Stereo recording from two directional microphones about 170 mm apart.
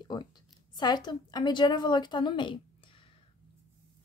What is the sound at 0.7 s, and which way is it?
A woman's voice, 25° left (ahead or behind).